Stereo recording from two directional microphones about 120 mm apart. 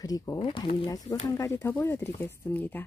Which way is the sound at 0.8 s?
30° left (ahead or behind).